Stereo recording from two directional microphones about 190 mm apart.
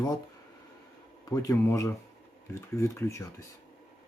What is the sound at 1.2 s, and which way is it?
Speech, 20° left (ahead or behind).